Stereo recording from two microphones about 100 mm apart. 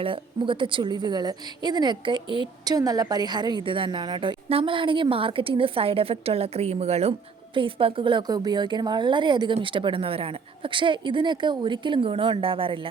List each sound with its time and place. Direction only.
0.0 s a woman's voice: 55° right (ahead or behind)
2.7 s a woman's voice: 40° right (ahead or behind)
4.4 s a woman's voice: 65° right (ahead or behind); by 7.1 s 90° right
7.5 s a woman's voice: 60° right (ahead or behind)
8.3 s a woman's voice: 45° right (ahead or behind); by 12.9 s 60° right (ahead or behind)